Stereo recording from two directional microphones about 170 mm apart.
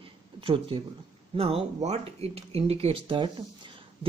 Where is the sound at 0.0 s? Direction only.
30° right (ahead or behind).